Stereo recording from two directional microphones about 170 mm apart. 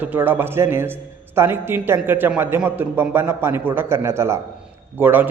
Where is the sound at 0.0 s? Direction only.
10° right (ahead or behind).